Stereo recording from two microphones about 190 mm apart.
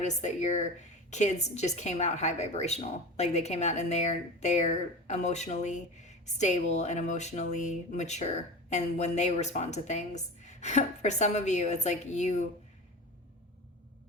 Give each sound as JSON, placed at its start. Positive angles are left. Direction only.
{"t": 0.0, "sound": "speech", "side_deg": 40}